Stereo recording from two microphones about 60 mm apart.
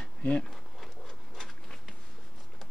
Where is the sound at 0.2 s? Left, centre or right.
Left.